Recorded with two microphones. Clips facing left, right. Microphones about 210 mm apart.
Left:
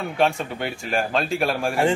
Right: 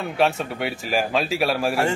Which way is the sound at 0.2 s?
Centre (ahead or behind).